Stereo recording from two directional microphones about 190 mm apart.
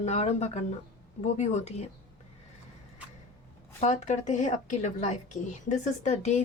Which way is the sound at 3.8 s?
40° left (ahead or behind).